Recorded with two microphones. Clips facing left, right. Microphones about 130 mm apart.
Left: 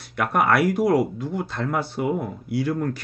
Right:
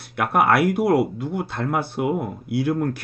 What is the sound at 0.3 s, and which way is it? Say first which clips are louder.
Speech: right 2 dB; 10° right (ahead or behind).